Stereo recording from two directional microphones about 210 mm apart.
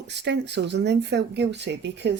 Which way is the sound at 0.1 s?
55° right (ahead or behind).